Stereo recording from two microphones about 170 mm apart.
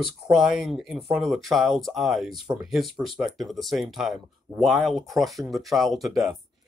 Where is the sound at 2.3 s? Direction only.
25° right (ahead or behind).